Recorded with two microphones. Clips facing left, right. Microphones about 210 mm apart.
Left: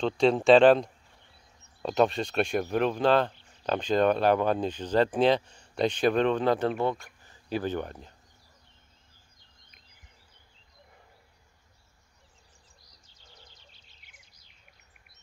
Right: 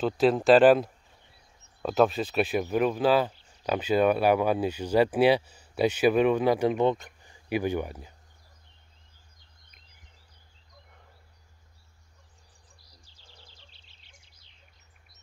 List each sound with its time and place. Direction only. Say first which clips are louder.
0.0 s speech: even; 5° right (ahead or behind)
13.0 s bird vocalization: left 2 dB; 30° right (ahead or behind)